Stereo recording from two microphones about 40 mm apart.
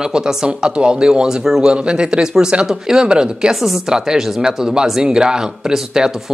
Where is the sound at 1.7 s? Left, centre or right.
Right.